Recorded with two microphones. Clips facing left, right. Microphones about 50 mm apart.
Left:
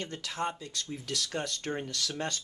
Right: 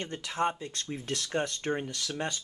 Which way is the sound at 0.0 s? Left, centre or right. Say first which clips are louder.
Right 4 dB; right.